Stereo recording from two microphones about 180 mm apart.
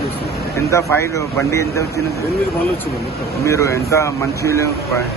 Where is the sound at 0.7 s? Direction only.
15° left (ahead or behind).